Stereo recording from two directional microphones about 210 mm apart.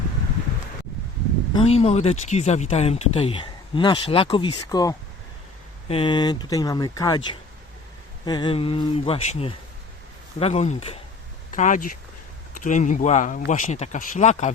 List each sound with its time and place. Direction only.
1.5 s speech: 30° left (ahead or behind)